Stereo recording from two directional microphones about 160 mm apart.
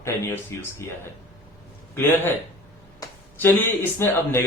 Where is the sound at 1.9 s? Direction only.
10° left (ahead or behind).